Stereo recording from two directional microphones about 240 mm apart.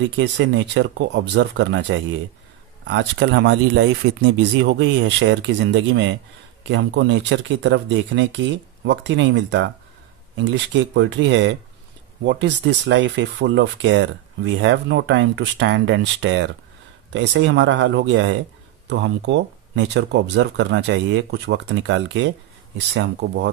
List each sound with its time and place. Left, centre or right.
0.2 s speech: right